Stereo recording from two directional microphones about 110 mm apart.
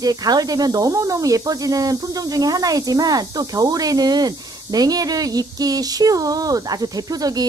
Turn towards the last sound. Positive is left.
turn(degrees=-35)  # may be behind; listen again after turning